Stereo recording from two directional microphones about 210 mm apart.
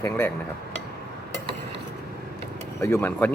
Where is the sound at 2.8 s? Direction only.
10° left (ahead or behind).